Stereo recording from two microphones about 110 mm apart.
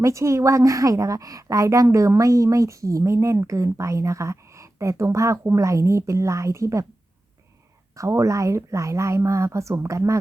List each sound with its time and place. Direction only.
0.0 s a woman's voice: 30° right (ahead or behind)
7.9 s a woman's voice: 30° right (ahead or behind)